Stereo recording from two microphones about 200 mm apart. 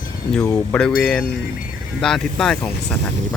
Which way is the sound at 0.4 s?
15° left (ahead or behind).